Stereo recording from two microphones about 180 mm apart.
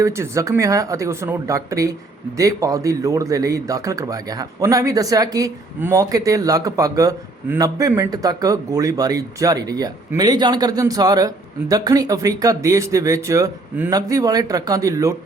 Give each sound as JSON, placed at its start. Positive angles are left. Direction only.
{"t": 0.0, "sound": "speech", "side_deg": -15}